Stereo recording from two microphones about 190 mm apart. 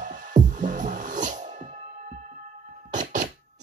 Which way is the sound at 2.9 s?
40° right (ahead or behind).